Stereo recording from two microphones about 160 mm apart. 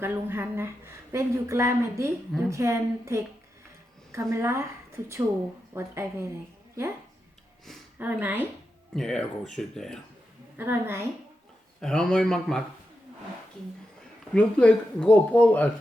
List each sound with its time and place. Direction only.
0.0 s a woman's voice: 15° right (ahead or behind)
7.9 s a woman's voice: 10° right (ahead or behind)
9.0 s speech: 5° left (ahead or behind)
10.6 s a woman's voice: 15° right (ahead or behind)
11.8 s speech: 5° left (ahead or behind)
14.3 s speech: 5° left (ahead or behind)